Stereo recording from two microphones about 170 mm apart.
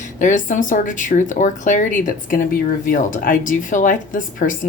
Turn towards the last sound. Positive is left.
turn(degrees=50)  # may be behind; listen again after turning